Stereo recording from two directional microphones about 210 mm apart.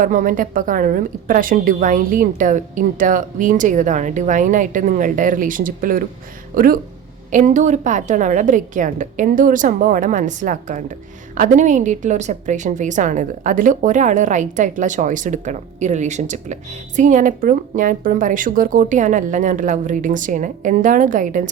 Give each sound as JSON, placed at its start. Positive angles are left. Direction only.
{"t": 0.0, "sound": "a woman's voice", "side_deg": -40}